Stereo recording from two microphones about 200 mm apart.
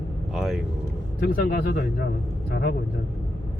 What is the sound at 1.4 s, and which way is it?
Speech, 50° left (ahead or behind).